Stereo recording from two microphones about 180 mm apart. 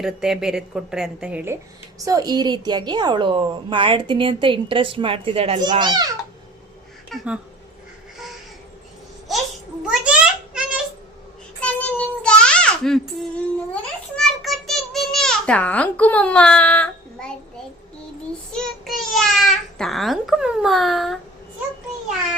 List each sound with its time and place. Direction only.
0.0 s a woman's voice: 5° right (ahead or behind)
2.0 s a woman's voice: 20° right (ahead or behind)
7.1 s a woman's voice: centre (ahead or behind)
9.3 s a child's voice: centre (ahead or behind)
9.9 s a sound: 5° right (ahead or behind)
11.6 s child singing: 10° left (ahead or behind)
14.2 s a sound: centre (ahead or behind)
18.5 s babbling: centre (ahead or behind)